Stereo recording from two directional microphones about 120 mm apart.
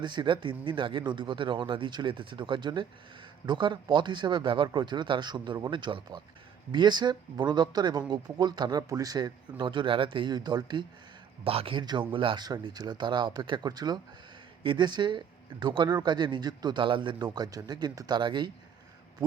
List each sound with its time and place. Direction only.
0.0 s speech: 40° right (ahead or behind)
11.4 s speech: 50° right (ahead or behind)